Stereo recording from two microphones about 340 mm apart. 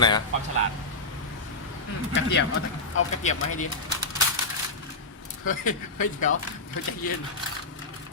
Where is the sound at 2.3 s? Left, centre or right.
Left.